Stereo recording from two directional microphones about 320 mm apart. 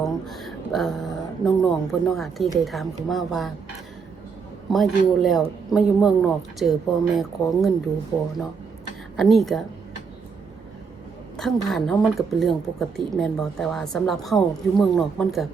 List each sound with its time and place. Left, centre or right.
0.0 s speech: centre
4.7 s speech: centre
9.1 s speech: centre
11.3 s speech: centre